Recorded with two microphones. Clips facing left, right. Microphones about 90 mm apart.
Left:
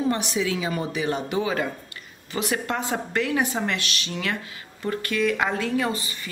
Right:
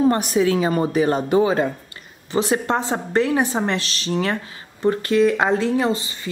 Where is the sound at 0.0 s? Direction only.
45° right (ahead or behind).